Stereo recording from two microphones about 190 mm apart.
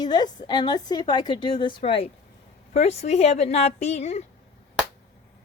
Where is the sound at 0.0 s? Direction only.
20° left (ahead or behind).